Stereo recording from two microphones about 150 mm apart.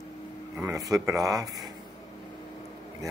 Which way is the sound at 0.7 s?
25° right (ahead or behind).